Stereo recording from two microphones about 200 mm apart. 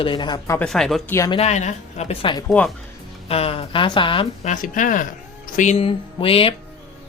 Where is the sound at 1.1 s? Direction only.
15° left (ahead or behind).